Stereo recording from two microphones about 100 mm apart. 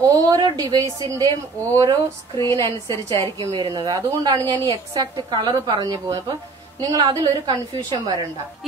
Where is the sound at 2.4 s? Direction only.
30° left (ahead or behind).